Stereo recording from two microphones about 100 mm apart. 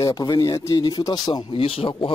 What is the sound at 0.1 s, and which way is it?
Speech, 40° left (ahead or behind).